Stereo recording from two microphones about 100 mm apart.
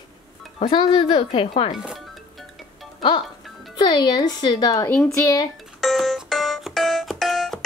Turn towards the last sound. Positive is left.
turn(degrees=0)  # may be behind; listen again after turning